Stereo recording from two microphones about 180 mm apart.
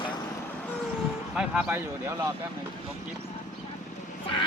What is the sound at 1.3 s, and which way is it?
Speech, 5° right (ahead or behind).